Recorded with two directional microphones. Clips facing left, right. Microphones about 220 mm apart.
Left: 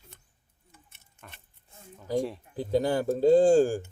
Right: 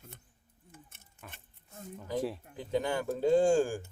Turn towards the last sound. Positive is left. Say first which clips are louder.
# left 6 dB
turn(degrees=35)  # may be behind; listen again after turning